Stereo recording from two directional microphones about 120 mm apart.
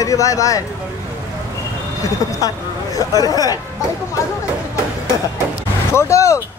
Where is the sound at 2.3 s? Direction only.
30° left (ahead or behind).